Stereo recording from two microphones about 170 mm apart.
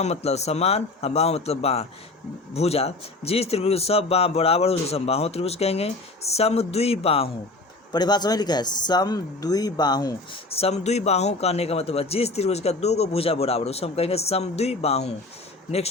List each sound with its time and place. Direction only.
0.0 s speech: 40° left (ahead or behind)
7.9 s speech: 25° left (ahead or behind)
10.5 s speech: 35° left (ahead or behind)